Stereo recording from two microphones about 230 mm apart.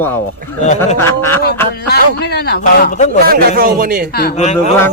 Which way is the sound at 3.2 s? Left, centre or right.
Right.